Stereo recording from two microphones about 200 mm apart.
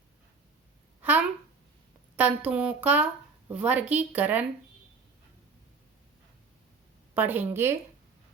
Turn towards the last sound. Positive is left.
turn(degrees=-10)  # may be behind; listen again after turning